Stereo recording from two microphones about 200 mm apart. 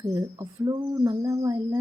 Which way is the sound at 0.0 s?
15° right (ahead or behind).